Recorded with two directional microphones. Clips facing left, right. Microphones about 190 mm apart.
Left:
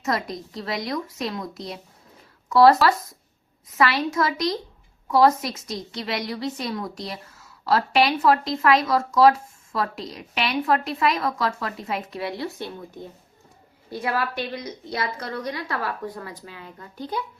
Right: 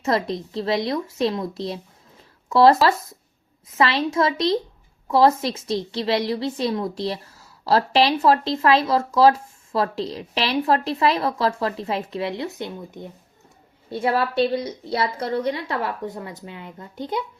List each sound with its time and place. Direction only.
0.0 s a woman's voice: 25° right (ahead or behind)
3.8 s a woman's voice: 25° right (ahead or behind)